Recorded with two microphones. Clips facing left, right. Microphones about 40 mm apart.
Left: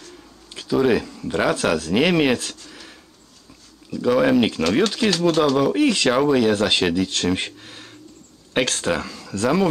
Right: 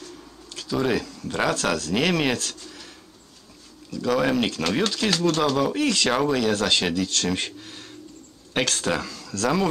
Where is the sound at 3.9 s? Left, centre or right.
Centre.